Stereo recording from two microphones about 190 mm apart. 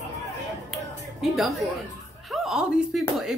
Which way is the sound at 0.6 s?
Centre (ahead or behind).